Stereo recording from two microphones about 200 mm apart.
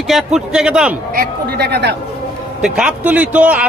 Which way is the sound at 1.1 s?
50° right (ahead or behind).